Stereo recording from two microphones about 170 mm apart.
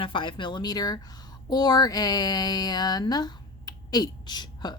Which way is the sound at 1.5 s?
25° left (ahead or behind).